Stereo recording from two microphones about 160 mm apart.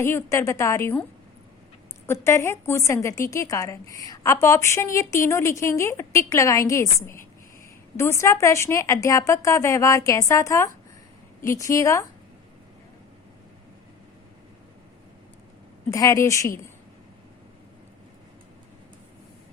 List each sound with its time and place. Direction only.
0.0 s a woman's voice: 15° left (ahead or behind)
2.2 s a woman's voice: 15° left (ahead or behind)
15.9 s a woman's voice: 20° left (ahead or behind)